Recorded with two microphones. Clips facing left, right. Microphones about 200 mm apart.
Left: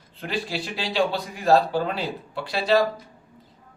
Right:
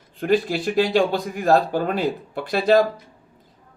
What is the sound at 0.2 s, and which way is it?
Speech, 50° right (ahead or behind).